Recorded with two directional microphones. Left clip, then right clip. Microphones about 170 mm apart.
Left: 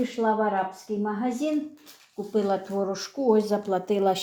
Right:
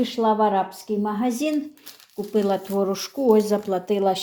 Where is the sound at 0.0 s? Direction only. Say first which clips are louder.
Right 4 dB; 30° right (ahead or behind).